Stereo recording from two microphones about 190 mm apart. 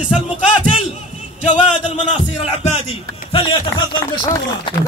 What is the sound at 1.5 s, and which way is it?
Speech, 40° left (ahead or behind).